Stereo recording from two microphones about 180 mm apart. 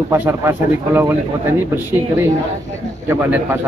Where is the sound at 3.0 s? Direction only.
15° right (ahead or behind).